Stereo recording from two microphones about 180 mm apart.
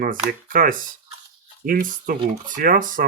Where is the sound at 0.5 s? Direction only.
50° right (ahead or behind).